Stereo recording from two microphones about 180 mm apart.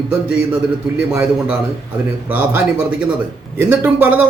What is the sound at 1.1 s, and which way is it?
A man's voice, 5° right (ahead or behind).